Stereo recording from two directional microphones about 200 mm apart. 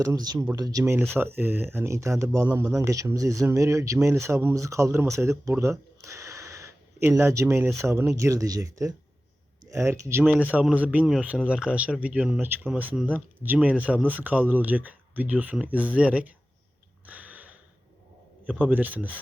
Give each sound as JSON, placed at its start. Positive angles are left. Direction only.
{"t": 0.0, "sound": "speech", "side_deg": -20}
{"t": 6.0, "sound": "a sound", "side_deg": -15}
{"t": 7.8, "sound": "speech", "side_deg": -15}
{"t": 17.1, "sound": "sniff", "side_deg": -5}
{"t": 18.4, "sound": "speech", "side_deg": -10}